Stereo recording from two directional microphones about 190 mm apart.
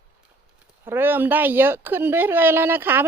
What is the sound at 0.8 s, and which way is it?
Speech, 10° right (ahead or behind).